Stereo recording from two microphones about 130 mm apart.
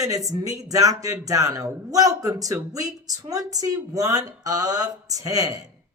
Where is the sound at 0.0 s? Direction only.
25° right (ahead or behind).